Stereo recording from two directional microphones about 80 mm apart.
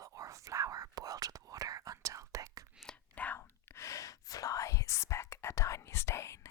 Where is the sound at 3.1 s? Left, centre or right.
Left.